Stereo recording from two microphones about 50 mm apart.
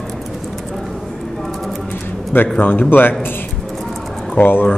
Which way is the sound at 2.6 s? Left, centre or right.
Left.